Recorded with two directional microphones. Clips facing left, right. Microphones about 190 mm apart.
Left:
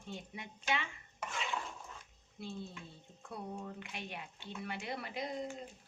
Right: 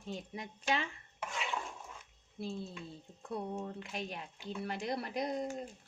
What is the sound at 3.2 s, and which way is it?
Speech, 40° right (ahead or behind).